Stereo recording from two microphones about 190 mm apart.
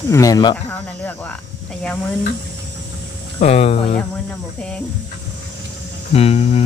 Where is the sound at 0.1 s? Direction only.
20° left (ahead or behind).